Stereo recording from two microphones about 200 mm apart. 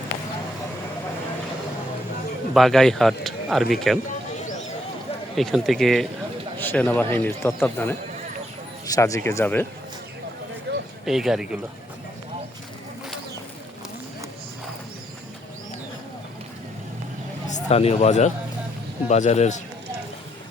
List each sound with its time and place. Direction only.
2.5 s speech: centre (ahead or behind)
5.4 s a man's voice: centre (ahead or behind)
10.7 s a sound: 60° right (ahead or behind)
11.0 s speech: centre (ahead or behind)
17.5 s speech: 30° left (ahead or behind)